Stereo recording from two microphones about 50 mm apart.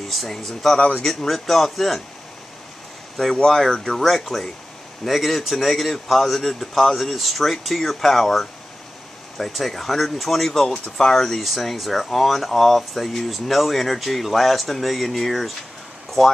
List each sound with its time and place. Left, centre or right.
0.1 s speech: centre
0.7 s speech: centre
1.0 s speech: centre
3.9 s speech: centre